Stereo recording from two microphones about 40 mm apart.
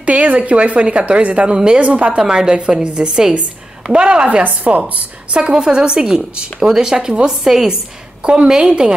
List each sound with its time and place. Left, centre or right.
0.0 s a woman's voice: right
1.8 s a woman's voice: right
2.1 s a woman's voice: centre
4.3 s a woman's voice: right
5.3 s a woman's voice: right